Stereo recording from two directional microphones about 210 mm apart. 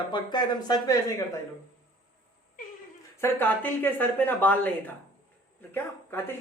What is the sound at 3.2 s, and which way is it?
Speech, 10° left (ahead or behind).